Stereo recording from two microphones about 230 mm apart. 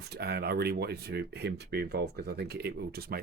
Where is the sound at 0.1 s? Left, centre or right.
Right.